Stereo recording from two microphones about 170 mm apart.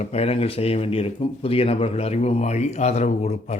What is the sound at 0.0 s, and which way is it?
Speech, 40° left (ahead or behind).